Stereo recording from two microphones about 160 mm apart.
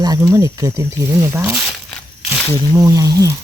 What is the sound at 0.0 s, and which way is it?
Speech, 20° right (ahead or behind).